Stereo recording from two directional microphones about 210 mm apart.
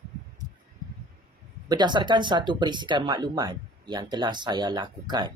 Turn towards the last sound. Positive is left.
turn(degrees=-20)  # may be behind; listen again after turning